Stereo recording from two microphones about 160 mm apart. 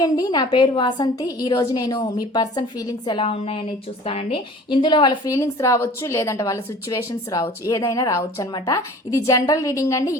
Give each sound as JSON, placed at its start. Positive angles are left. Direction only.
{"t": 0.0, "sound": "a woman's voice", "side_deg": 25}